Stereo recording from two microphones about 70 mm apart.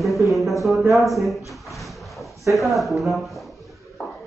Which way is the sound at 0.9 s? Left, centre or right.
Centre.